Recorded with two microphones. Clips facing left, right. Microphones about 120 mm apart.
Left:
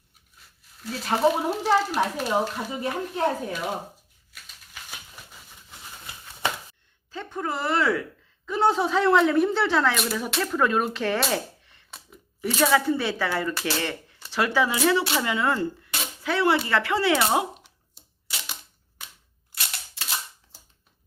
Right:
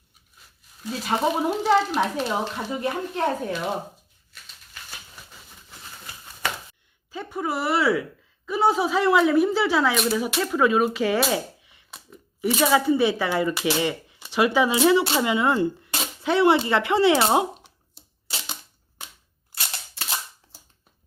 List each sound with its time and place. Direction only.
0.8 s speech: centre (ahead or behind)
4.3 s a sound: 10° left (ahead or behind)
7.1 s a woman's voice: 10° right (ahead or behind); by 17.7 s 25° right (ahead or behind)